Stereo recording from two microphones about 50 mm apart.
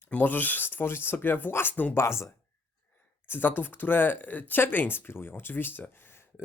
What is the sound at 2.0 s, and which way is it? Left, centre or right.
Speech, left.